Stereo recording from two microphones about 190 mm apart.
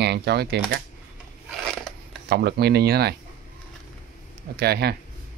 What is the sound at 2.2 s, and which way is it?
Speech, 60° right (ahead or behind).